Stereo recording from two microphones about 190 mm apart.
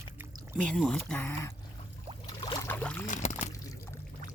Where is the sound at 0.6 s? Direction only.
5° left (ahead or behind).